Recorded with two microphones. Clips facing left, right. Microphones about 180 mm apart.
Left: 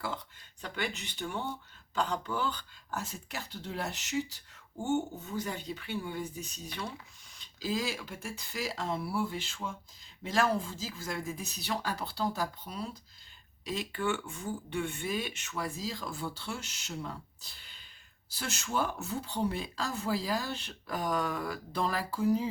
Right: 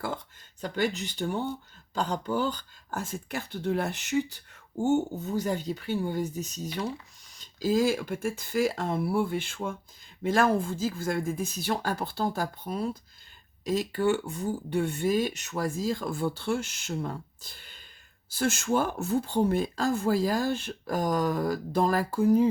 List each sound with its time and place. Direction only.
0.6 s speech: 40° right (ahead or behind)
4.8 s speech: 40° right (ahead or behind)